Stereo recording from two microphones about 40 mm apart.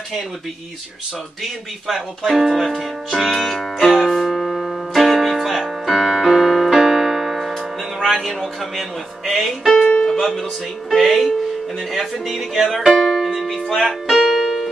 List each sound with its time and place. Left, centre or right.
1.4 s speech: centre
3.3 s music: centre
6.8 s keyboard: centre
8.0 s speech: centre
9.8 s music: left
10.9 s music: centre
11.9 s speech: centre
12.9 s music: centre